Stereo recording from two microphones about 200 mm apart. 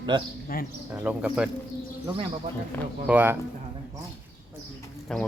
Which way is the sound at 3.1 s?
10° right (ahead or behind).